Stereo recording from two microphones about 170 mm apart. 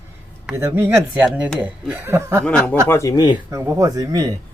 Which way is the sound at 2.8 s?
15° left (ahead or behind).